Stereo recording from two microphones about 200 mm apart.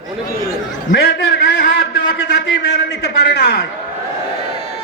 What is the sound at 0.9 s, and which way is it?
A man's voice, 55° left (ahead or behind).